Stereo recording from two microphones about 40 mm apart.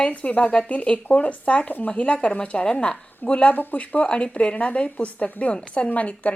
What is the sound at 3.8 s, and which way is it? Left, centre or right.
Speech, left.